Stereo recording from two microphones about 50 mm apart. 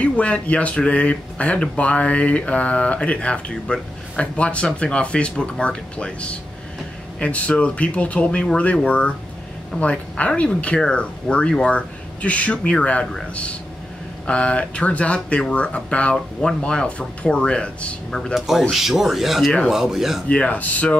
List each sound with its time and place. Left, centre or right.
0.0 s speech: left
18.3 s speech: centre
20.2 s speech: left